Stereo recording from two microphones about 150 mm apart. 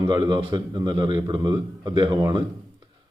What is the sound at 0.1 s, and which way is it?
A man's voice, 30° right (ahead or behind).